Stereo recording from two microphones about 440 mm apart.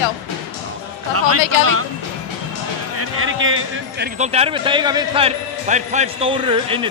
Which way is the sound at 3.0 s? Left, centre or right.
Right.